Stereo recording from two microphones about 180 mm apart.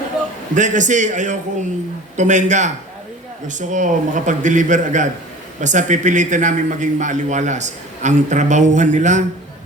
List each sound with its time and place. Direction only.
0.5 s a man's voice: 45° right (ahead or behind)